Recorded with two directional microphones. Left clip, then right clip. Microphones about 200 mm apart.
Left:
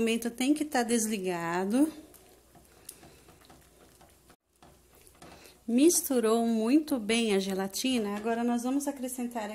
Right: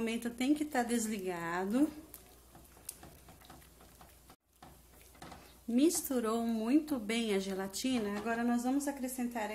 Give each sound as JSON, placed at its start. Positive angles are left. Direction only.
{"t": 0.0, "sound": "a woman's voice", "side_deg": 45}
{"t": 5.7, "sound": "a woman's voice", "side_deg": 35}